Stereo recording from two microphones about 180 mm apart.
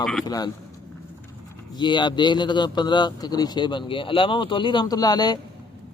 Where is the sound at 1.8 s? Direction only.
25° left (ahead or behind).